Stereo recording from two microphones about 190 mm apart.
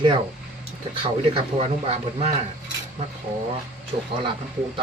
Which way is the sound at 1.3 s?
35° right (ahead or behind).